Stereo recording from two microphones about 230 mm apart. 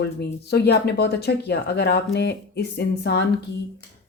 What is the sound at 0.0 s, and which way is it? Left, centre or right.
Speech, left.